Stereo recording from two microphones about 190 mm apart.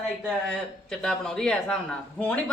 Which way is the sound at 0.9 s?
5° left (ahead or behind).